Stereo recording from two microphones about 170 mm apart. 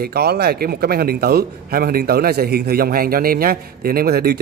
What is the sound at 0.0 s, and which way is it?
A man's voice, 65° right (ahead or behind).